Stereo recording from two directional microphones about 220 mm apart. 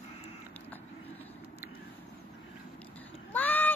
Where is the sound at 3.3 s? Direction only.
10° left (ahead or behind).